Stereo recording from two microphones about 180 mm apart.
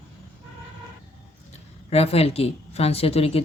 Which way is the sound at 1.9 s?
35° left (ahead or behind).